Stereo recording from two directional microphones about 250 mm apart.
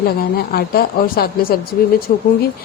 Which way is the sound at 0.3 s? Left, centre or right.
Left.